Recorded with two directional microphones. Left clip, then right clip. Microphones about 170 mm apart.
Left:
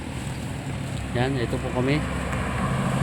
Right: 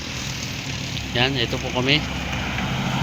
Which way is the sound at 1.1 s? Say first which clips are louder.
Right 5 dB; 10° left (ahead or behind).